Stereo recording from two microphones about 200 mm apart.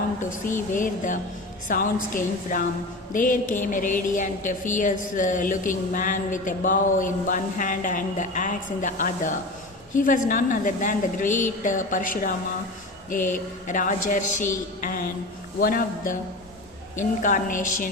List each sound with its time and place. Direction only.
0.7 s a woman's voice: 40° left (ahead or behind)